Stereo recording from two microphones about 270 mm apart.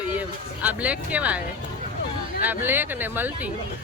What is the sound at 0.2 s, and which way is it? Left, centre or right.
Speech, centre.